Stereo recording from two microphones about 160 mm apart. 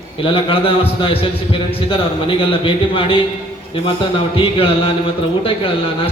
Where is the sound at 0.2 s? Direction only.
35° left (ahead or behind).